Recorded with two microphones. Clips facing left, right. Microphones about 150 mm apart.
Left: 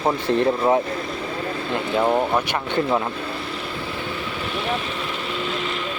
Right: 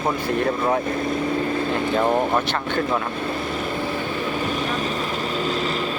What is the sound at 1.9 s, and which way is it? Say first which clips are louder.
Speech: left 1 dB; 10° left (ahead or behind).